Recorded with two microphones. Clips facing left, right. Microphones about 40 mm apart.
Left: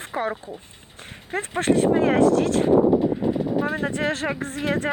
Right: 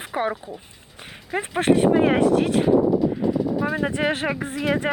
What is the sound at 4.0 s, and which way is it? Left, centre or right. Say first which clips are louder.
Speech: right 2 dB; centre.